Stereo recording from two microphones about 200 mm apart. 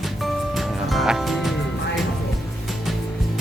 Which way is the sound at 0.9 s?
Centre (ahead or behind).